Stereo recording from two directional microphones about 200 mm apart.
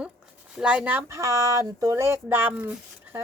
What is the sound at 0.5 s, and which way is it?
A woman's voice, 5° right (ahead or behind).